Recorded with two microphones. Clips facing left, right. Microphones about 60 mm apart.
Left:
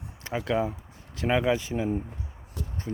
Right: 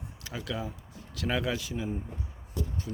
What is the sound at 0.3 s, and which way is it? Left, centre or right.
Speech, left.